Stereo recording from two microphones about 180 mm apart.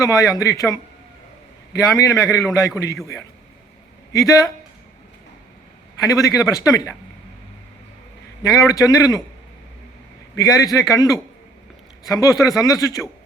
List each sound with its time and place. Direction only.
0.0 s a man's voice: 20° left (ahead or behind)
4.1 s a man's voice: 20° left (ahead or behind)
6.0 s a man's voice: 20° left (ahead or behind)
8.4 s a man's voice: 20° left (ahead or behind)
10.3 s a man's voice: 20° left (ahead or behind)